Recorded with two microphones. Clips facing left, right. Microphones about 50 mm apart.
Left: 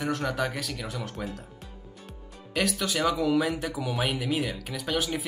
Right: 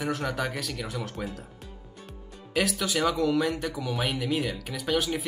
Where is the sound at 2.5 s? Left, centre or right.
Centre.